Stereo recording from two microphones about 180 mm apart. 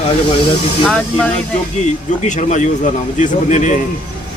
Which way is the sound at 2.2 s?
40° left (ahead or behind).